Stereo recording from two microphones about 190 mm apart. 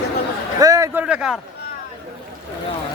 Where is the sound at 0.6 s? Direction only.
15° right (ahead or behind).